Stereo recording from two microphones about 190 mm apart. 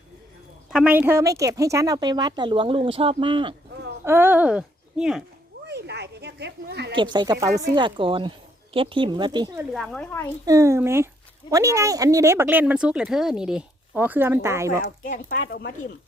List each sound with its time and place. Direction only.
0.7 s a woman's voice: 5° right (ahead or behind); by 3.5 s 25° right (ahead or behind)
4.0 s speech: 10° right (ahead or behind)
5.6 s a sound: 65° right (ahead or behind)
6.9 s a woman's voice: 25° right (ahead or behind)
9.7 s speech: 5° left (ahead or behind)
10.4 s speech: 15° right (ahead or behind)
14.7 s speech: 45° left (ahead or behind)